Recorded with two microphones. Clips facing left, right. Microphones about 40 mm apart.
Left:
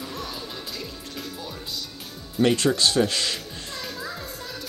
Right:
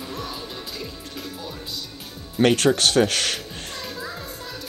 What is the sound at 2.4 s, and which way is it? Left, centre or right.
Speech, right.